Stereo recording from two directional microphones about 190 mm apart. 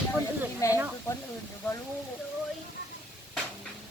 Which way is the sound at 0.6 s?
15° left (ahead or behind).